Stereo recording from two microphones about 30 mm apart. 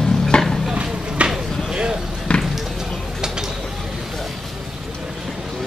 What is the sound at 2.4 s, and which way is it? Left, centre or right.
Basketball bounce, centre.